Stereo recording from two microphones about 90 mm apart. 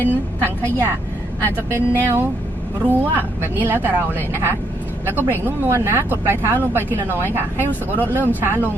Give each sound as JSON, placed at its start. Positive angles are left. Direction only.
{"t": 0.4, "sound": "speech", "side_deg": -25}
{"t": 7.7, "sound": "speech", "side_deg": 20}
{"t": 8.1, "sound": "speech", "side_deg": -20}